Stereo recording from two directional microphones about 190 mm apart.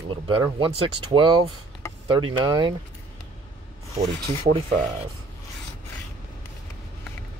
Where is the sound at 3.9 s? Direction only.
35° right (ahead or behind).